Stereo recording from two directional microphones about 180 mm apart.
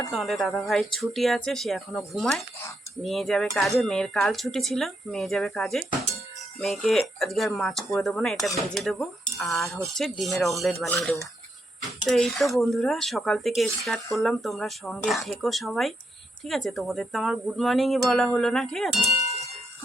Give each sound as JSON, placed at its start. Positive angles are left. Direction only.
{"t": 0.1, "sound": "speech", "side_deg": 0}
{"t": 19.2, "sound": "ding", "side_deg": 35}